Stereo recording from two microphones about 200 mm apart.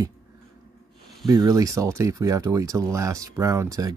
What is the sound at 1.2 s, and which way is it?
Speech, 20° right (ahead or behind).